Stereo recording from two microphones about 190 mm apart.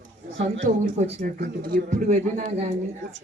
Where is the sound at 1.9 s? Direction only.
40° right (ahead or behind).